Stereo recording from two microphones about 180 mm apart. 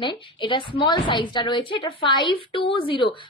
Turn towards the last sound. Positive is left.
turn(degrees=25)  # may be behind; listen again after turning